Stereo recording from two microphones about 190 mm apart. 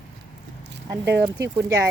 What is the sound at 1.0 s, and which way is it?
Speech, 65° right (ahead or behind).